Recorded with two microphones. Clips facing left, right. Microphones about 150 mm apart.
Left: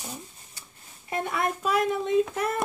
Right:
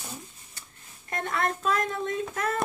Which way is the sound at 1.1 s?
10° left (ahead or behind).